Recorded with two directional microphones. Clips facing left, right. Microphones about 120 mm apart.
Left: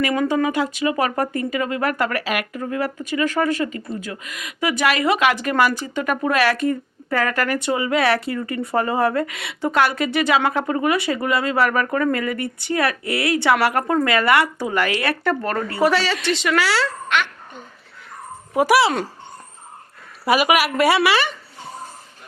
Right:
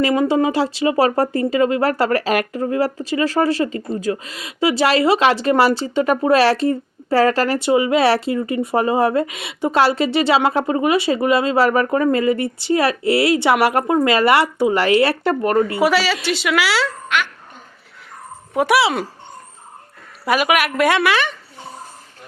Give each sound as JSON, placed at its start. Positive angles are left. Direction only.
{"t": 0.0, "sound": "speech", "side_deg": -25}
{"t": 15.8, "sound": "a woman's voice", "side_deg": -5}
{"t": 18.5, "sound": "a woman's voice", "side_deg": 0}
{"t": 20.2, "sound": "a woman's voice", "side_deg": 5}